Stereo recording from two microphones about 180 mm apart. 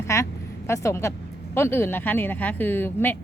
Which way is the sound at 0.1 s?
15° left (ahead or behind).